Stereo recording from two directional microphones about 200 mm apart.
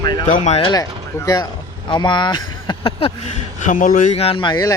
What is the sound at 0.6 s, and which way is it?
A man's voice, 20° left (ahead or behind).